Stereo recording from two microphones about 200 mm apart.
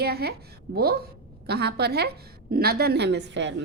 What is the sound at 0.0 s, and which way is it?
A woman's voice, 50° right (ahead or behind).